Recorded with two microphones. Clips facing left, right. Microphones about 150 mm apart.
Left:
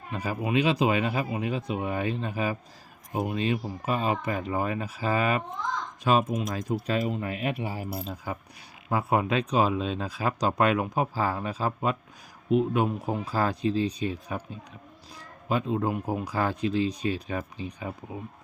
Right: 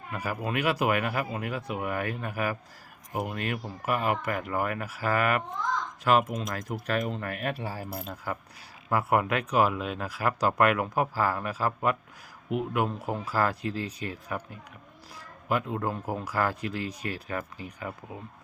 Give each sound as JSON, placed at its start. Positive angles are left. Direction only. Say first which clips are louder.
{"t": 0.1, "sound": "speech", "louder": "left 3 dB", "side_deg": 20}
{"t": 7.0, "sound": "speech", "louder": "left 2 dB", "side_deg": 5}